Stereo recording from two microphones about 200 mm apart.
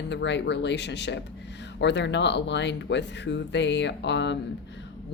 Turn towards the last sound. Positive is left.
turn(degrees=60)  # may be behind; listen again after turning